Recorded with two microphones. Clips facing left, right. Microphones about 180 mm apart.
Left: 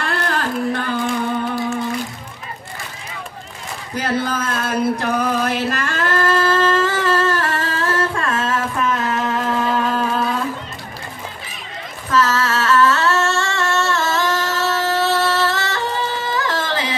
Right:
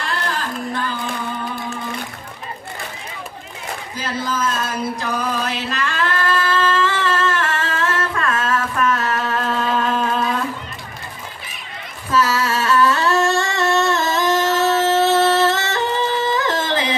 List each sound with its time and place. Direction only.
0.0 s singing: 55° left (ahead or behind)
3.9 s a sound: 60° left (ahead or behind); by 10.3 s 5° left (ahead or behind)
12.1 s singing: 10° right (ahead or behind)